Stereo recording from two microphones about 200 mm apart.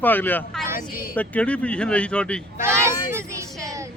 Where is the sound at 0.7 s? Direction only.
45° left (ahead or behind).